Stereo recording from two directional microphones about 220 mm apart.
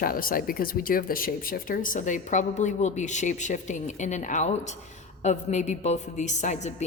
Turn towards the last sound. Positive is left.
turn(degrees=30)  # may be behind; listen again after turning